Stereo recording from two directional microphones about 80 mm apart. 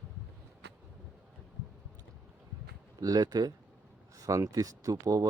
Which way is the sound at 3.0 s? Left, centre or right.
Right.